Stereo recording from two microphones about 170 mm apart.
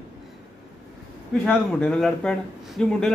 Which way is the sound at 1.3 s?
5° left (ahead or behind).